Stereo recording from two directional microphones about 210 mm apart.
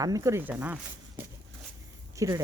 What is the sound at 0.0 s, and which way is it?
Speech, 15° right (ahead or behind).